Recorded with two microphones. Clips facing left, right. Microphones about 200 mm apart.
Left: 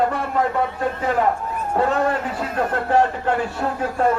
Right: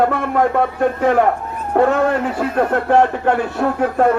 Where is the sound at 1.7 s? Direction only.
60° right (ahead or behind).